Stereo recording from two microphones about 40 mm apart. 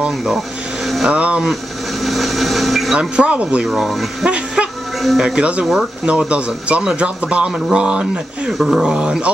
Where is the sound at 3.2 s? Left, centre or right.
Right.